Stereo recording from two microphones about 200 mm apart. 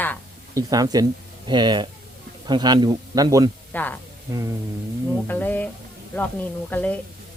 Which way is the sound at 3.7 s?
10° left (ahead or behind).